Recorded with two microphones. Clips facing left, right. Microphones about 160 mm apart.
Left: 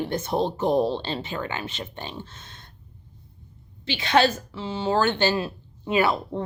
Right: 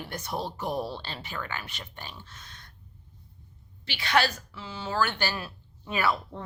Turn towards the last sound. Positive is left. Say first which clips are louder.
# left 6 dB
turn(degrees=25)  # may be behind; listen again after turning